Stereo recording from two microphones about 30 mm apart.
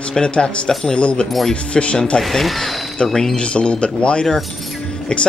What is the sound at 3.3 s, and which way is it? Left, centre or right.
Speech, left.